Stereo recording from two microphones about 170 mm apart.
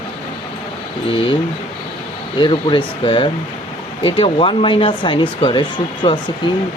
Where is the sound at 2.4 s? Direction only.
30° left (ahead or behind).